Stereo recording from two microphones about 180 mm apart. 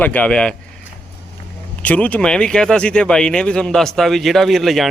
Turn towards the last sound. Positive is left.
turn(degrees=0)  # may be behind; listen again after turning